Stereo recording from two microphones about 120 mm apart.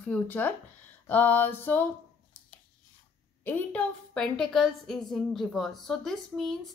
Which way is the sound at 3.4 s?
15° left (ahead or behind).